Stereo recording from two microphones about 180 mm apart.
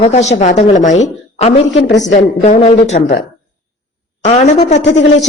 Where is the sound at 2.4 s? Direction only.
40° left (ahead or behind).